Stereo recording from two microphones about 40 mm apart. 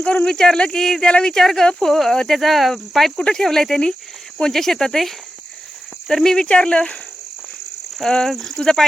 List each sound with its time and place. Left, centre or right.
0.0 s speech: left
1.4 s speech: centre
7.9 s speech: centre